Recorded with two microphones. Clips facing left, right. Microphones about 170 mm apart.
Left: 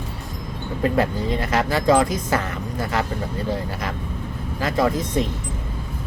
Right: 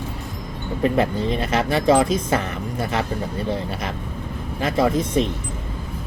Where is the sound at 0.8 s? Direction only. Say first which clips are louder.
Right 1 dB; 20° right (ahead or behind).